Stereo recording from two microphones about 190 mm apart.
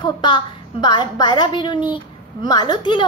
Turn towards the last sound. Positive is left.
turn(degrees=25)  # may be behind; listen again after turning